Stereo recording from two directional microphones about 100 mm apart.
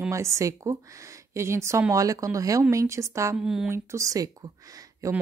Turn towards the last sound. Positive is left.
turn(degrees=-35)  # may be behind; listen again after turning